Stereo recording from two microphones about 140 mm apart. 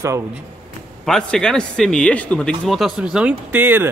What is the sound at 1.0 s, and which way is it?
Speech, 5° left (ahead or behind).